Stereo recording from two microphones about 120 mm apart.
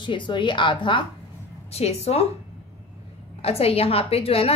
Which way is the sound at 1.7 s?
60° left (ahead or behind).